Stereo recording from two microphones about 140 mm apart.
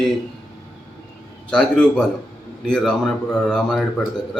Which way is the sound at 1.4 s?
5° left (ahead or behind).